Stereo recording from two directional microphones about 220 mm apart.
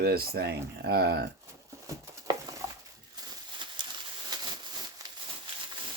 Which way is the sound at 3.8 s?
20° right (ahead or behind).